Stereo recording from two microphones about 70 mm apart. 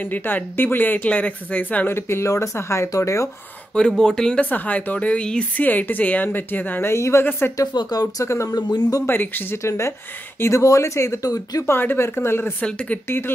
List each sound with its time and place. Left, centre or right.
0.0 s speech: left
2.0 s speech: left
3.7 s speech: centre
4.5 s speech: left
5.6 s speech: left
6.9 s speech: left
7.2 s speech: left
7.5 s speech: left
8.5 s speech: left
9.0 s speech: left
9.6 s speech: left
11.6 s speech: left
12.6 s speech: centre